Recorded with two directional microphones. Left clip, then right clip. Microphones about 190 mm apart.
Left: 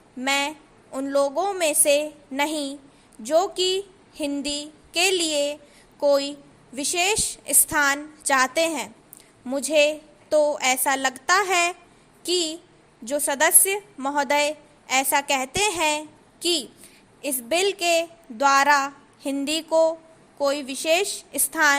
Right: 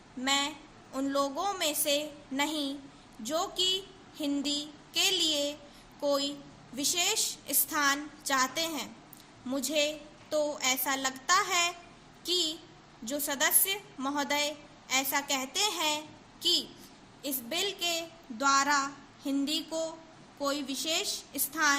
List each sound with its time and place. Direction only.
0.2 s a woman's voice: 45° left (ahead or behind)